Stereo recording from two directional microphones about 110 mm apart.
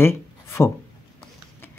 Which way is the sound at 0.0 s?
25° left (ahead or behind).